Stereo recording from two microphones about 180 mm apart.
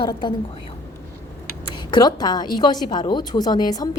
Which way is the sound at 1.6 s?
25° left (ahead or behind).